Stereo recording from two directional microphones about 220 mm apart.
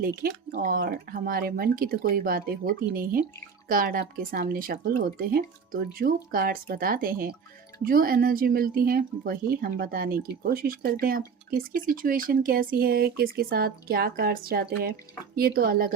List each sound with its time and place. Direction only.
0.2 s speech: 40° right (ahead or behind)